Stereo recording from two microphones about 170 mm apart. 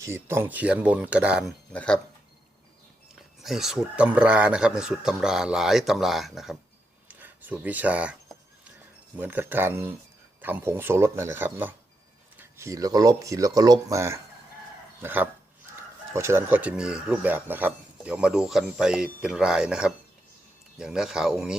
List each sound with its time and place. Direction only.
0.0 s speech: 15° right (ahead or behind)
1.7 s speech: 5° left (ahead or behind)
3.2 s speech: centre (ahead or behind)
9.1 s speech: 10° right (ahead or behind)